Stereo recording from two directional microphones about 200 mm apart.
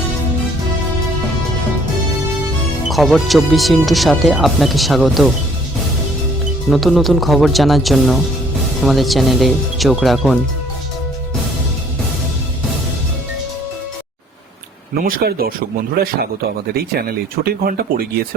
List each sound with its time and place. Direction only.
2.9 s speech: centre (ahead or behind)
6.7 s speech: centre (ahead or behind)
15.0 s speech: 50° right (ahead or behind)
16.7 s speech: 50° right (ahead or behind)